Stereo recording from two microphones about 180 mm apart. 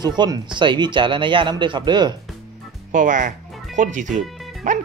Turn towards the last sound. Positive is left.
turn(degrees=-45)  # may be behind; listen again after turning